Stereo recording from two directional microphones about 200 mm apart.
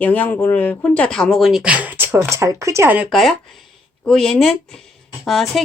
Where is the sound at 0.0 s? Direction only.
10° left (ahead or behind).